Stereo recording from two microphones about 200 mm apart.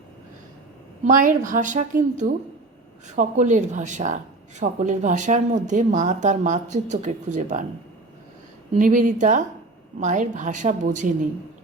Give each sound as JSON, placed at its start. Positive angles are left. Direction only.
{"t": 1.0, "sound": "speech", "side_deg": -40}
{"t": 8.7, "sound": "speech", "side_deg": -40}